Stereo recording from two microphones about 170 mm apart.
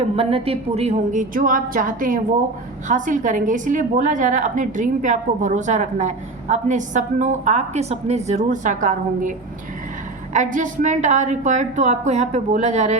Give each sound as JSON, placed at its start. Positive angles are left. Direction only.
{"t": 0.2, "sound": "a woman's voice", "side_deg": -35}
{"t": 10.3, "sound": "a woman's voice", "side_deg": -50}